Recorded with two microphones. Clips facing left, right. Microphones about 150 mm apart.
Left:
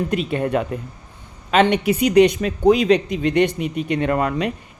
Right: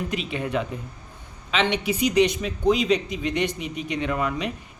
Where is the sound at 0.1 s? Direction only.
50° left (ahead or behind).